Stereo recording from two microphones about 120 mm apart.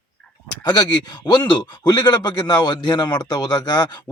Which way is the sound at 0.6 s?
35° left (ahead or behind).